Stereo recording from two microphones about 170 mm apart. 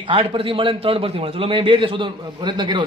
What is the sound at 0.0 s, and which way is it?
A man's voice, 30° right (ahead or behind).